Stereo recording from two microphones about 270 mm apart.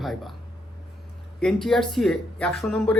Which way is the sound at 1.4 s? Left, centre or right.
Centre.